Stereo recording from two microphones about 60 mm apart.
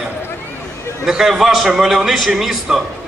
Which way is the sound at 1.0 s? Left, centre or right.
Centre.